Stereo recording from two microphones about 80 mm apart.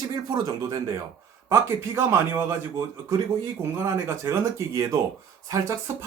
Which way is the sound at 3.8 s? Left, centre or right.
Right.